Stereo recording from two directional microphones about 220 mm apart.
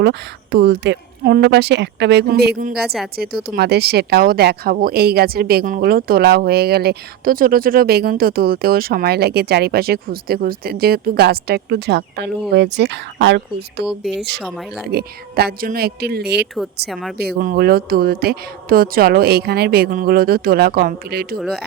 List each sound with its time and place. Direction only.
0.0 s speech: 50° right (ahead or behind)
14.0 s speech: centre (ahead or behind)
14.8 s speech: 45° right (ahead or behind)
16.9 s speech: centre (ahead or behind)
17.2 s speech: 45° right (ahead or behind)
21.3 s speech: centre (ahead or behind)